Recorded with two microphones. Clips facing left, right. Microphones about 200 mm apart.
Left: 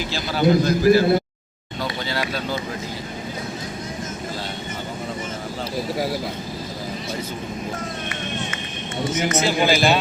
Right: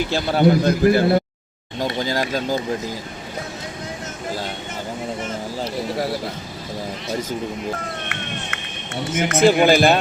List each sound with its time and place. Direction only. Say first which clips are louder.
0.1 s a man's voice: right 1 dB; 60° right (ahead or behind)
1.8 s speech: right 4 dB; 40° right (ahead or behind)
9.1 s speech: right 7 dB; 55° right (ahead or behind)